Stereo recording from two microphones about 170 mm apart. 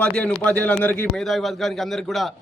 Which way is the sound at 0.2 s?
10° left (ahead or behind).